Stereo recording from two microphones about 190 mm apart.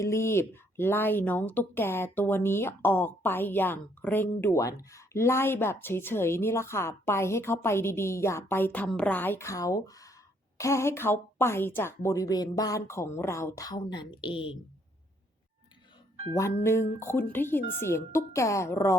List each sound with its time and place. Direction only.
0.0 s speech: 15° left (ahead or behind)
17.0 s speech: 10° left (ahead or behind)